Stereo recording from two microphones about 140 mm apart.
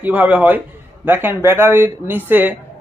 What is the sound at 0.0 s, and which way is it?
Speech, 10° right (ahead or behind).